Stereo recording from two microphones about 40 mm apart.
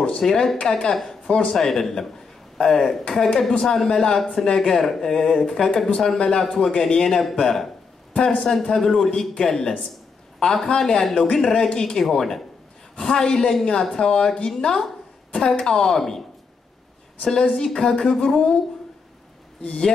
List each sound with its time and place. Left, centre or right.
0.2 s speech: centre; by 1.5 s left
1.5 s speech: centre